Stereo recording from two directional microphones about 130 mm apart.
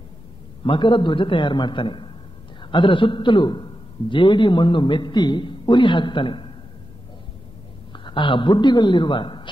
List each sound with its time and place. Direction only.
0.7 s a man's voice: 40° left (ahead or behind)
7.9 s a man's voice: 40° left (ahead or behind)